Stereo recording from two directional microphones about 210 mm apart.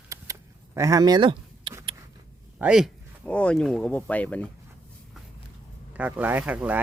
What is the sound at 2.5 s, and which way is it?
Speech, 5° right (ahead or behind).